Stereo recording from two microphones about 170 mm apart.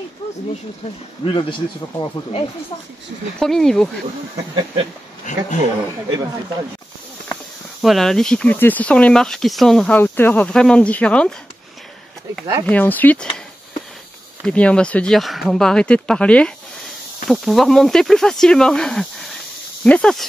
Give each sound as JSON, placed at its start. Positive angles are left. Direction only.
{"t": 1.2, "sound": "speech", "side_deg": 30}
{"t": 3.3, "sound": "speech", "side_deg": 5}
{"t": 5.2, "sound": "speech", "side_deg": 45}
{"t": 7.8, "sound": "speech", "side_deg": 0}
{"t": 12.6, "sound": "speech", "side_deg": 10}
{"t": 14.4, "sound": "speech", "side_deg": 5}